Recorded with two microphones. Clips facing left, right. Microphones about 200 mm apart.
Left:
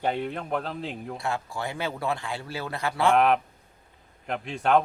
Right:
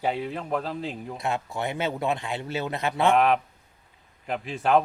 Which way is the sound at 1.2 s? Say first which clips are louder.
Right 3 dB; 20° right (ahead or behind).